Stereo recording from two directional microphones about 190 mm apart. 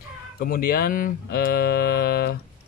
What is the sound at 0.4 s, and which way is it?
Speech, 50° left (ahead or behind).